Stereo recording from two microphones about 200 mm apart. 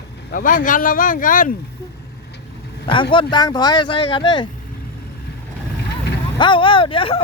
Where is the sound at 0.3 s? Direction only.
45° left (ahead or behind).